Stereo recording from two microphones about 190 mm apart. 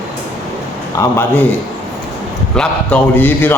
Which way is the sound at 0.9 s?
15° left (ahead or behind).